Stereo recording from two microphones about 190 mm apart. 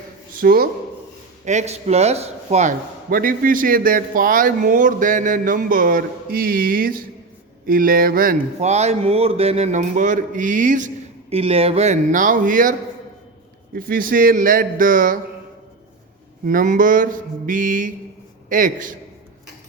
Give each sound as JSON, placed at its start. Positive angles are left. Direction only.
{"t": 0.3, "sound": "speech", "side_deg": -50}
{"t": 1.5, "sound": "speech", "side_deg": -35}
{"t": 13.7, "sound": "speech", "side_deg": -50}
{"t": 16.5, "sound": "speech", "side_deg": -45}